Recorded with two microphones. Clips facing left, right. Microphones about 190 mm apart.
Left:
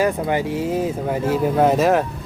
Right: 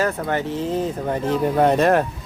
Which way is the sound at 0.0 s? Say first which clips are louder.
Left 3 dB; 15° left (ahead or behind).